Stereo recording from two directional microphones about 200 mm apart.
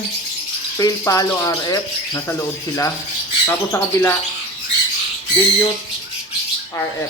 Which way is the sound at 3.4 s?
10° left (ahead or behind).